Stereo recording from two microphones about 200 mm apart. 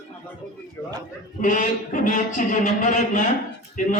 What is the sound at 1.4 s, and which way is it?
Speech, 40° left (ahead or behind).